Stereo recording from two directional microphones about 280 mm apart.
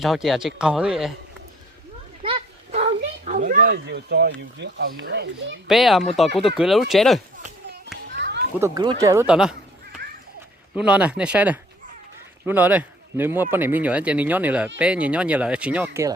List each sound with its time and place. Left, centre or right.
0.0 s speech: centre
2.2 s speech: right
5.6 s speech: centre
8.1 s children playing: right
8.5 s speech: centre
10.8 s speech: centre